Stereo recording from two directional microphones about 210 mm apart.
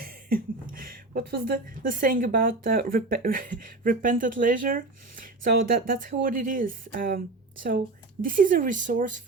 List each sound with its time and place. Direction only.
0.0 s speech: 45° right (ahead or behind)
8.2 s speech: 40° right (ahead or behind)